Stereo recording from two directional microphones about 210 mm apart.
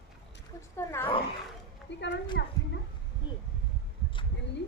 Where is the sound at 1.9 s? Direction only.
55° left (ahead or behind).